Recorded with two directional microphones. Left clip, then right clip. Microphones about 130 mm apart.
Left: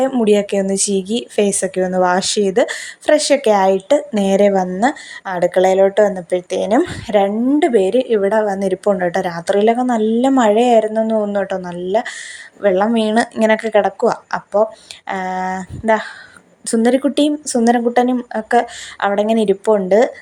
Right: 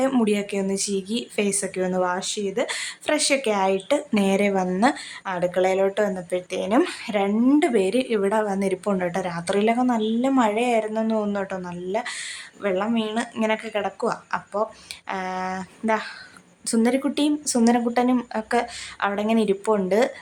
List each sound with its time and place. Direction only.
0.3 s speech: 35° left (ahead or behind)
2.0 s speech: 55° left (ahead or behind)
2.6 s a woman's voice: 30° left (ahead or behind); by 13.2 s 55° left (ahead or behind)
13.4 s a woman's voice: 40° left (ahead or behind)